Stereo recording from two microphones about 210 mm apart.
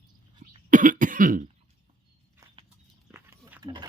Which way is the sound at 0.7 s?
40° right (ahead or behind).